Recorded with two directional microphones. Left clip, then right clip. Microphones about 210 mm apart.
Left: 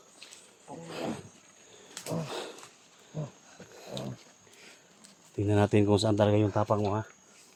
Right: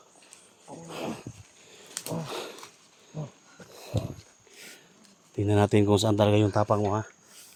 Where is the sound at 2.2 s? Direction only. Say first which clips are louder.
Right 2 dB; 15° right (ahead or behind).